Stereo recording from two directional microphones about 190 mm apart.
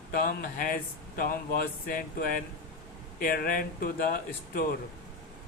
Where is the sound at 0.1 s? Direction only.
50° left (ahead or behind).